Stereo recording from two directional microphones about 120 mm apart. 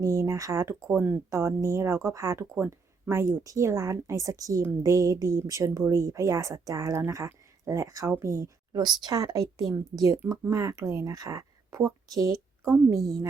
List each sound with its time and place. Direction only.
0.0 s a woman's voice: 25° right (ahead or behind)